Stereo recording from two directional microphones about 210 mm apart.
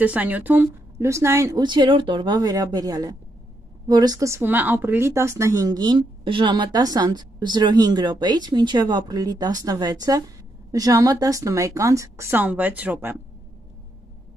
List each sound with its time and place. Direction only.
0.0 s speech: 5° right (ahead or behind)